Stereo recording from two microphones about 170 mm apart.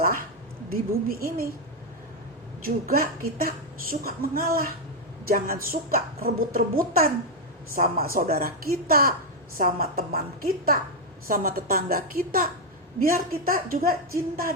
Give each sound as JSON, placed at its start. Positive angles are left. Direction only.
{"t": 0.7, "sound": "a woman's voice", "side_deg": -60}
{"t": 2.6, "sound": "a woman's voice", "side_deg": -60}